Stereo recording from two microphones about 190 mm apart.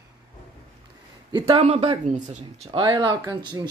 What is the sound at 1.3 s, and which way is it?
Speech, 30° right (ahead or behind).